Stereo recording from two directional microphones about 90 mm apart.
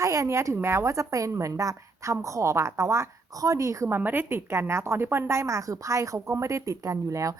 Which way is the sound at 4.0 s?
20° right (ahead or behind).